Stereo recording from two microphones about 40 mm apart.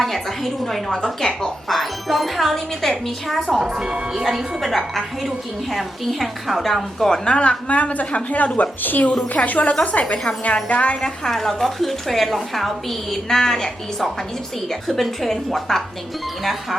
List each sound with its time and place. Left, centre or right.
0.0 s a woman's voice: centre
1.6 s a woman's voice: centre
3.8 s speech: right
4.2 s a woman's voice: centre
5.7 s a woman's voice: centre
7.1 s a woman's voice: left
11.3 s a woman's voice: centre